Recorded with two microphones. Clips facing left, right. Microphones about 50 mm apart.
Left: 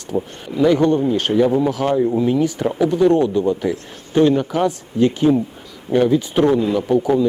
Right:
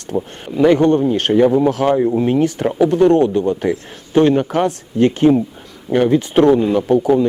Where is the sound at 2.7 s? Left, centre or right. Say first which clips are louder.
Right 3 dB; right.